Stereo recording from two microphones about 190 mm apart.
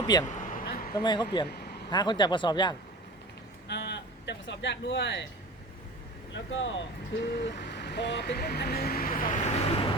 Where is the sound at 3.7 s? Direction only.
65° left (ahead or behind).